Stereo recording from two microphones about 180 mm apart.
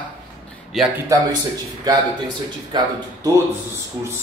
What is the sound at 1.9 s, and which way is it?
Speech, 20° right (ahead or behind).